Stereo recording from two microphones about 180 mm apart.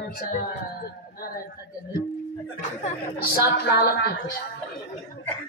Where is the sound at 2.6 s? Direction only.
50° left (ahead or behind); by 4.4 s 65° left (ahead or behind).